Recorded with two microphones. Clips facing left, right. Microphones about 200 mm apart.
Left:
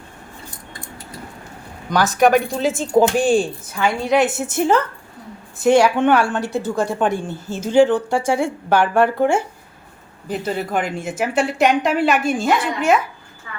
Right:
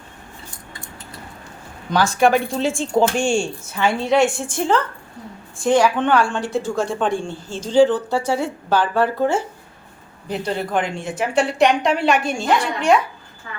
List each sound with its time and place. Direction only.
2.0 s speech: 15° left (ahead or behind)
2.8 s speech: 45° left (ahead or behind)
3.2 s a woman's voice: centre (ahead or behind)